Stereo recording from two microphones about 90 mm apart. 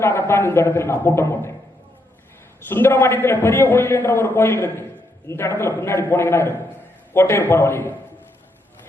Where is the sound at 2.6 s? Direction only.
25° left (ahead or behind).